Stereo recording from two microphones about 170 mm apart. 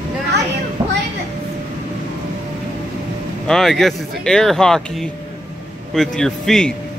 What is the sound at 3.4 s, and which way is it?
Speech, centre (ahead or behind).